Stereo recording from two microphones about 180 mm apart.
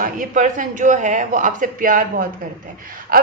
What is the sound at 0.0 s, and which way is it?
A woman's voice, 50° right (ahead or behind).